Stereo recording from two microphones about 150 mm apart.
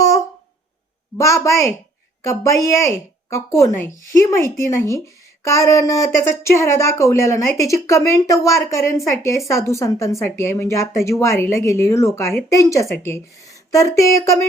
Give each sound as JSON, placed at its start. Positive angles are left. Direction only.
{"t": 1.2, "sound": "a woman's voice", "side_deg": 20}